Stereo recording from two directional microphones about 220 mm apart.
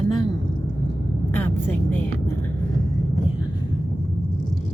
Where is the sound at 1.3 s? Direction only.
10° left (ahead or behind).